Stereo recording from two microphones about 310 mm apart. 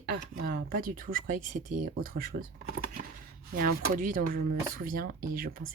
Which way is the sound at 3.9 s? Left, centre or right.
Right.